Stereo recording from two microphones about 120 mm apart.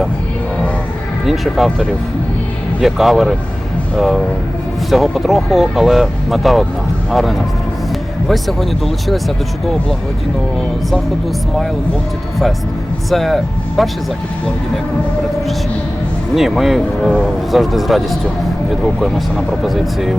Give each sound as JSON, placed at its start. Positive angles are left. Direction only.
{"t": 1.3, "sound": "speech", "side_deg": 0}
{"t": 13.1, "sound": "speech", "side_deg": 0}
{"t": 16.3, "sound": "speech", "side_deg": 0}